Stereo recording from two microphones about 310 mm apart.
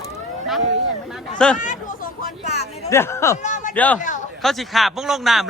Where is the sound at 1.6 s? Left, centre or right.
Left.